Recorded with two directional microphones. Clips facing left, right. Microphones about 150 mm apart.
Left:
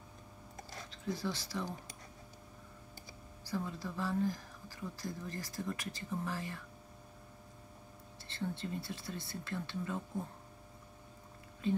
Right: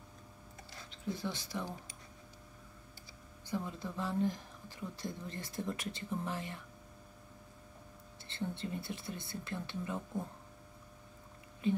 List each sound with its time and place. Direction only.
0.8 s speech: 20° right (ahead or behind)
3.4 s speech: 20° right (ahead or behind)
8.3 s speech: 20° right (ahead or behind)